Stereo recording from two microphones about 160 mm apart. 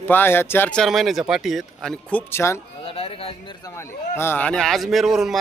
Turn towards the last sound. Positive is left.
turn(degrees=-5)  # may be behind; listen again after turning